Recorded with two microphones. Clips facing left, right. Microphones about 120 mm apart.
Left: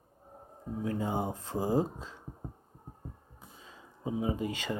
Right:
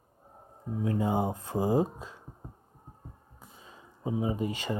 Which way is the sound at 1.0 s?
10° right (ahead or behind).